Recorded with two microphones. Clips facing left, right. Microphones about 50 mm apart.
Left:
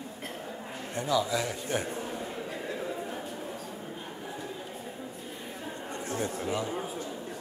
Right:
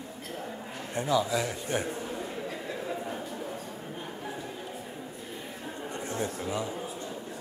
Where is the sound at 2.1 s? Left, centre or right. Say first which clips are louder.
Right 1 dB; centre.